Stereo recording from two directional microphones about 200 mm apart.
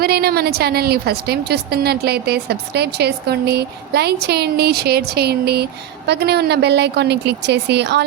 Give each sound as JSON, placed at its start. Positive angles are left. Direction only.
{"t": 0.0, "sound": "a woman's voice", "side_deg": -50}